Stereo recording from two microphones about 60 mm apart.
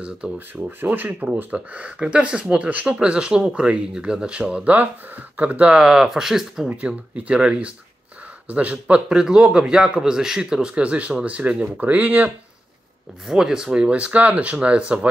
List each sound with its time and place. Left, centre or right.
0.6 s speech: right
5.8 s speech: centre
10.7 s speech: right
13.3 s speech: centre